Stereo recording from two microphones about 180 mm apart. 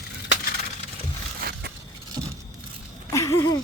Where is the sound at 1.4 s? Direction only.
60° right (ahead or behind).